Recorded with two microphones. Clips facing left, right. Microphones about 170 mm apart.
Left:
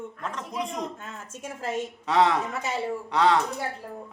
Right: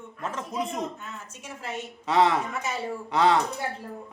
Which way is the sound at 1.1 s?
50° left (ahead or behind).